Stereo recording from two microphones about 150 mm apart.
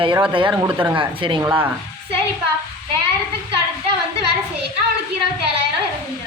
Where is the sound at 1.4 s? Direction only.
15° right (ahead or behind).